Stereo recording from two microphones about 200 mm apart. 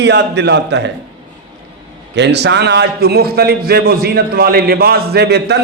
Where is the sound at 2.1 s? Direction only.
60° right (ahead or behind).